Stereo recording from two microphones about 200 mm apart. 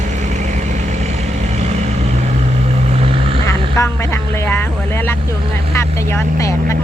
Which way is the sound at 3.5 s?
15° left (ahead or behind).